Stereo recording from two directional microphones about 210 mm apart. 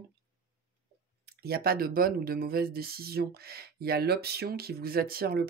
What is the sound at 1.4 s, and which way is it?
Speech, 45° right (ahead or behind).